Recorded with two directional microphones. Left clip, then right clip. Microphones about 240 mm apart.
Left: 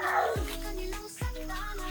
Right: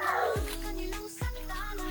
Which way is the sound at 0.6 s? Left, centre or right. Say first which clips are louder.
Even; centre.